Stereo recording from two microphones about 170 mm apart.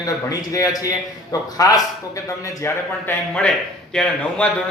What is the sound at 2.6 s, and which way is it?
A man's voice, 10° left (ahead or behind).